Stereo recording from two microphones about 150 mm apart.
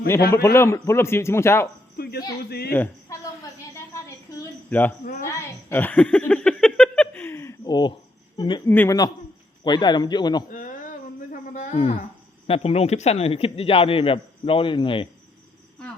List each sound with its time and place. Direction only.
0.4 s a man's voice: 20° left (ahead or behind)
2.0 s speech: 90° left
2.7 s speech: 15° left (ahead or behind)
4.7 s a man's voice: 15° left (ahead or behind)
5.6 s a sound: 15° left (ahead or behind); by 7.9 s 30° left (ahead or behind)
8.4 s a man's voice: 30° left (ahead or behind)
8.6 s a man's voice: 15° left (ahead or behind)
9.6 s a man's voice: 30° left (ahead or behind)
10.5 s a sound: 60° left (ahead or behind)
12.5 s a man's voice: 45° left (ahead or behind)